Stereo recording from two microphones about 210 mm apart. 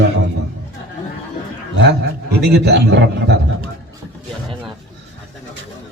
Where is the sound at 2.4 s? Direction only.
50° right (ahead or behind).